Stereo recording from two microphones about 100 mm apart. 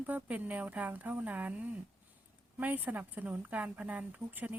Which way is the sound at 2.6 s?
15° right (ahead or behind).